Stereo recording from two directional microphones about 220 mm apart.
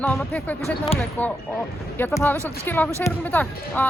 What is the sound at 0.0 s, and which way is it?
Speech, 5° left (ahead or behind).